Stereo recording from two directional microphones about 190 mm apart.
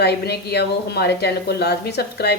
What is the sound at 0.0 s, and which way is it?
Speech, 60° left (ahead or behind).